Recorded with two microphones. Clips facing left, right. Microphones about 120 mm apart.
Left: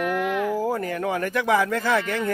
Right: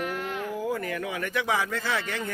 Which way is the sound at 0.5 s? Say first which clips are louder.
Left 5 dB; 35° left (ahead or behind).